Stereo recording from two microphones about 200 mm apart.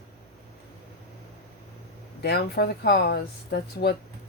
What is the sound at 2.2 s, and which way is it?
Speech, 50° left (ahead or behind).